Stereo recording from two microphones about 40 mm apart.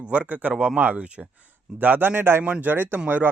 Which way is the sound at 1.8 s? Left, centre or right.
Right.